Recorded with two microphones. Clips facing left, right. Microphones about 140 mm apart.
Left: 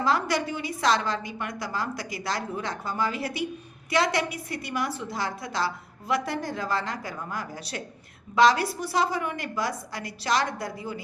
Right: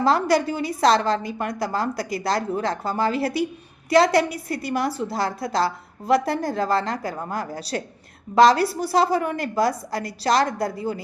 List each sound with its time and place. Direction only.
0.0 s a woman's voice: 35° right (ahead or behind)